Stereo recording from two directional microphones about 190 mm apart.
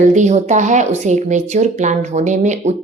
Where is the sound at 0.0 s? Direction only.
40° right (ahead or behind).